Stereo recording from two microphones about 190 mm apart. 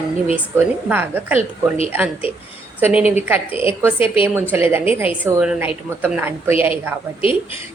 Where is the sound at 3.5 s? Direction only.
30° left (ahead or behind).